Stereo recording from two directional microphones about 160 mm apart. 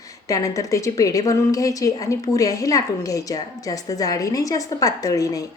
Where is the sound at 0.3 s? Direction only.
20° left (ahead or behind).